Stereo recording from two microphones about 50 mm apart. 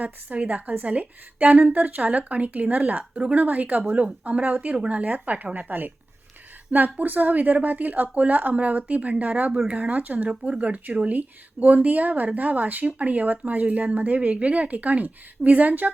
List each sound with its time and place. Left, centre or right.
0.0 s a woman's voice: right
3.3 s speech: right